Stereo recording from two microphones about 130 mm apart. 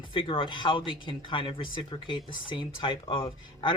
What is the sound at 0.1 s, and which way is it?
Speech, 40° left (ahead or behind).